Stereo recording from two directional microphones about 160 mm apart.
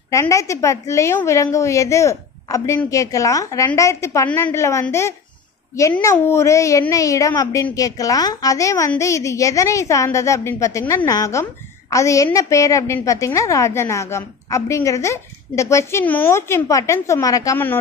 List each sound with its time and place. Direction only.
0.1 s a woman's voice: 20° left (ahead or behind)